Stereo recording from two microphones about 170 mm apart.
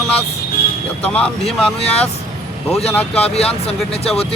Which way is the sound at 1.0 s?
5° left (ahead or behind).